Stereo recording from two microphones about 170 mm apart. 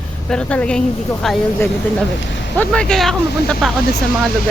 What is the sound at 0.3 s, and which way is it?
Speech, 5° left (ahead or behind).